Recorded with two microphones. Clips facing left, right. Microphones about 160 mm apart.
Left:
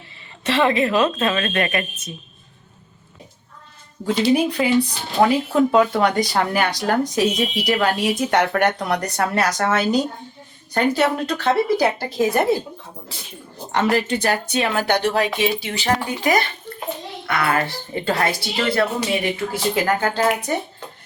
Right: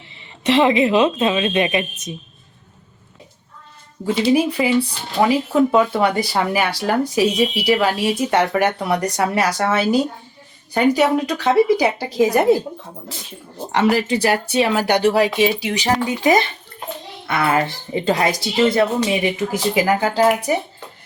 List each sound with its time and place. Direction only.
0.4 s speech: 20° right (ahead or behind)
4.0 s speech: 5° right (ahead or behind)
13.7 s a woman's voice: 5° right (ahead or behind)